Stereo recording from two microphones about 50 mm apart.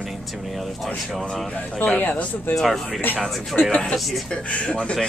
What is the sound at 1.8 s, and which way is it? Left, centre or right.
Speech, left.